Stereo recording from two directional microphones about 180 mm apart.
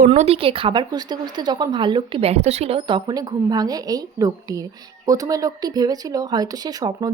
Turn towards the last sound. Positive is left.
turn(degrees=-20)  # may be behind; listen again after turning